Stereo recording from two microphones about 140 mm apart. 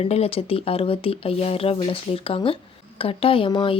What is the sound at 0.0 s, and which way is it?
A woman's voice, 45° left (ahead or behind).